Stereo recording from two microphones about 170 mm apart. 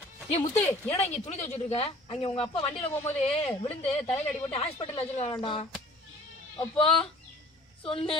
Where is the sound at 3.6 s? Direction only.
30° left (ahead or behind).